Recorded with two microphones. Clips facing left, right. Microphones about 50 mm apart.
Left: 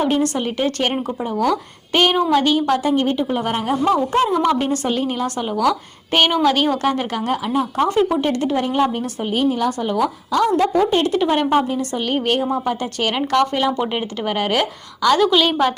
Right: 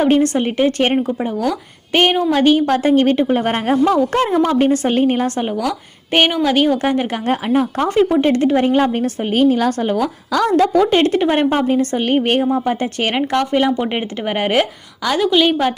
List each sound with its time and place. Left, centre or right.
0.0 s a woman's voice: right
2.6 s speech: right
4.4 s a woman's voice: right
6.1 s a woman's voice: right
7.3 s a woman's voice: right
8.7 s speech: right
10.3 s a woman's voice: right
11.2 s a woman's voice: right
11.5 s a woman's voice: right
13.4 s speech: centre
15.0 s a woman's voice: centre